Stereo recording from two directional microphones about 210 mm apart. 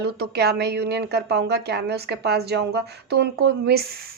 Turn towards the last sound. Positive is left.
turn(degrees=-50)  # may be behind; listen again after turning